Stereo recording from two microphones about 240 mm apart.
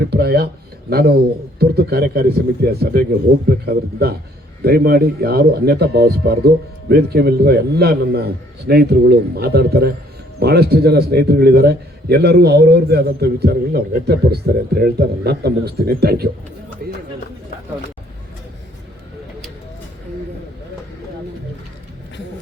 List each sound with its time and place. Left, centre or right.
0.0 s a man's voice: right